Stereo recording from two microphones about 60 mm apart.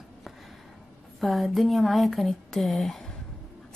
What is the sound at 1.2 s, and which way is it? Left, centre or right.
A woman's voice, centre.